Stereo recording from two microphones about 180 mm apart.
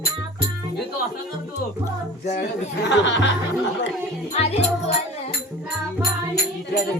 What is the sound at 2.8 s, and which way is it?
Speech, 80° left.